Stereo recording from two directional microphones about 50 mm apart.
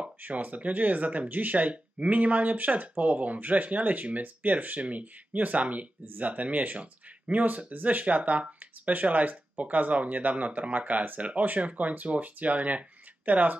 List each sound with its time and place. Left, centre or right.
0.2 s speech: right